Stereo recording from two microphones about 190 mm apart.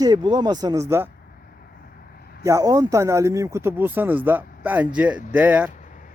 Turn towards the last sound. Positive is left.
turn(degrees=-10)  # may be behind; listen again after turning